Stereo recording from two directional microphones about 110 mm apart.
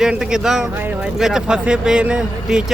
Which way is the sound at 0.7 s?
15° right (ahead or behind).